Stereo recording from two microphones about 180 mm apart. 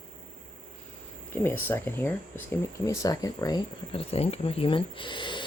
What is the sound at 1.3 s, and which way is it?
Speech, 10° left (ahead or behind).